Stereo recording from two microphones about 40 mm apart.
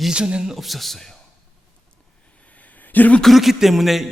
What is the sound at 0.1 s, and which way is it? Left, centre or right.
Speech, right.